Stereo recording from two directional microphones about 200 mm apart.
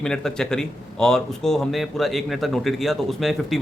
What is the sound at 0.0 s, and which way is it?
Speech, 5° left (ahead or behind).